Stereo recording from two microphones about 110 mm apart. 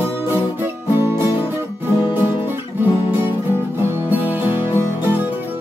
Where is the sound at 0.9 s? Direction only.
20° right (ahead or behind).